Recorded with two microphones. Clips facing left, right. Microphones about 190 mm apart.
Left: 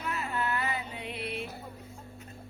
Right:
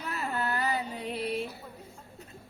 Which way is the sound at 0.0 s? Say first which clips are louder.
Even; 40° right (ahead or behind).